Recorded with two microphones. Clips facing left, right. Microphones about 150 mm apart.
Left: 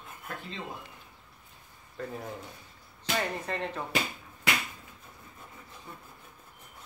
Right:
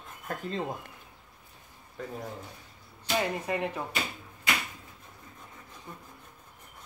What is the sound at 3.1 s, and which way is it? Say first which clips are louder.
Speech: right 3 dB; 10° right (ahead or behind).